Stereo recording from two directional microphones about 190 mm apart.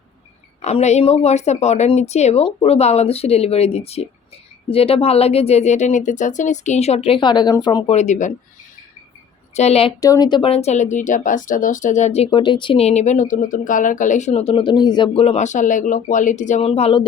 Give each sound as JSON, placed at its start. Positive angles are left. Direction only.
{"t": 0.6, "sound": "speech", "side_deg": 35}
{"t": 7.9, "sound": "speech", "side_deg": 35}
{"t": 9.6, "sound": "speech", "side_deg": 35}
{"t": 10.0, "sound": "speech", "side_deg": 20}